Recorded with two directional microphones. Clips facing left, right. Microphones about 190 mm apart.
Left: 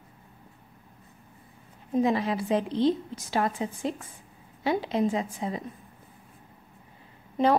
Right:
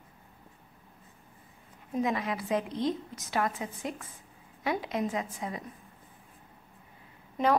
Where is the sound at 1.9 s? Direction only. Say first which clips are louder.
Left 5 dB; 30° left (ahead or behind).